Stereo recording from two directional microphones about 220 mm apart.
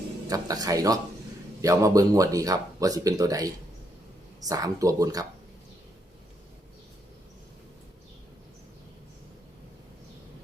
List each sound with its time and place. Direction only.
0.3 s speech: 15° right (ahead or behind)